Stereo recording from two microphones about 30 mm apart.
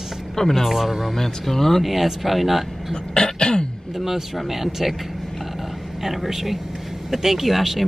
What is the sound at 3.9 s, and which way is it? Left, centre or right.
Speech, centre.